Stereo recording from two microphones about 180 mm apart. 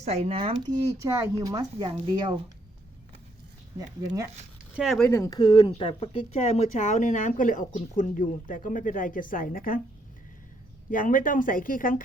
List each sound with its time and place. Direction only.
0.0 s speech: 35° right (ahead or behind)
0.9 s speech: 15° right (ahead or behind)
3.8 s speech: 20° right (ahead or behind)
4.7 s speech: centre (ahead or behind)
5.0 s speech: 15° left (ahead or behind); by 9.8 s 50° left (ahead or behind)
10.9 s speech: 50° left (ahead or behind)